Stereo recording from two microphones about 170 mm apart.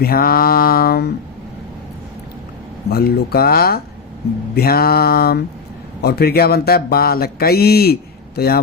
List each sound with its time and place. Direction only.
0.0 s mantra: 60° left (ahead or behind)
2.9 s mantra: 65° left (ahead or behind)
6.0 s speech: 70° left (ahead or behind)
8.4 s mantra: 65° left (ahead or behind)